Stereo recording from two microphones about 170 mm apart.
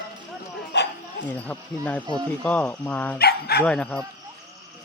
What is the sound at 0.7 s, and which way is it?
Bow-wow, 85° left.